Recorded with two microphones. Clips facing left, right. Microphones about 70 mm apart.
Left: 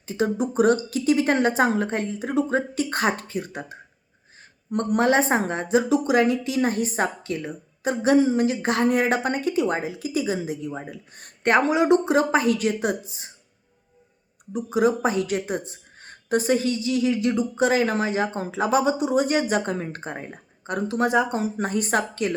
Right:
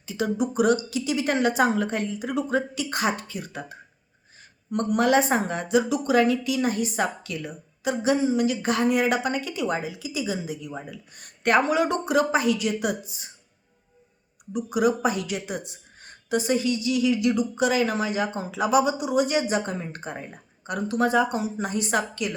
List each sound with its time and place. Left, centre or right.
0.0 s speech: left
4.7 s speech: left
10.4 s speech: left
12.8 s speech: left
14.5 s speech: left
20.0 s speech: left
21.3 s a woman's voice: left